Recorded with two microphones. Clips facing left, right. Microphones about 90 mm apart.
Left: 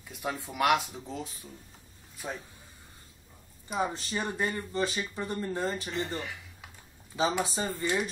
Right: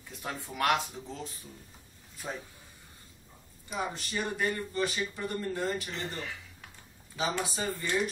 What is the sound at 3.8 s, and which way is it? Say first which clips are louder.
Speech: left 3 dB; 25° left (ahead or behind).